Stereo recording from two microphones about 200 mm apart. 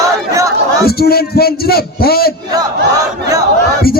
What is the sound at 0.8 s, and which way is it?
A man's voice, 50° left (ahead or behind).